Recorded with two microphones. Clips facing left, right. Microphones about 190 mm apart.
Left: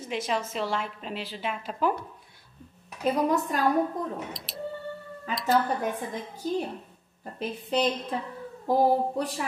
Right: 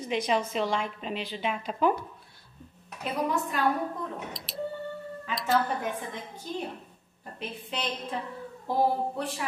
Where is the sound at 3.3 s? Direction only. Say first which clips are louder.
Left 3 dB; 40° left (ahead or behind).